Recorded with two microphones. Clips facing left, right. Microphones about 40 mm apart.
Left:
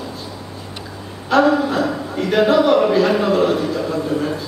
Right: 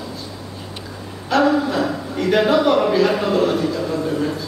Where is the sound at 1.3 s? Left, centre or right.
Left.